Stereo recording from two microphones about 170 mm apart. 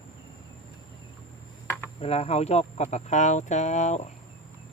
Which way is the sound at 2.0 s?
35° left (ahead or behind).